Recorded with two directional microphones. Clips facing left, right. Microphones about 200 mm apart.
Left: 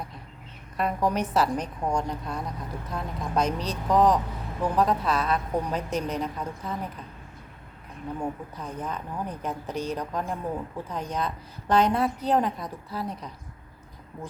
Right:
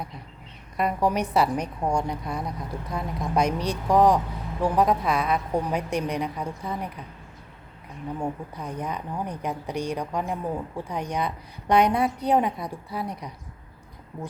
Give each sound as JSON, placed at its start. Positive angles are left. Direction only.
{"t": 0.8, "sound": "a woman's voice", "side_deg": -10}
{"t": 8.2, "sound": "a woman's voice", "side_deg": -10}